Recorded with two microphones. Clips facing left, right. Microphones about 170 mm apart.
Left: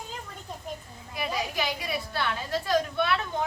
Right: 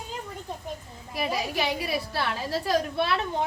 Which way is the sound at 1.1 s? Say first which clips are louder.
Right 2 dB; 30° right (ahead or behind).